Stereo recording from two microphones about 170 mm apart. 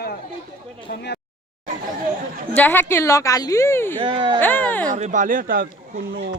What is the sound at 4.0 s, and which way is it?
Speech, 30° right (ahead or behind).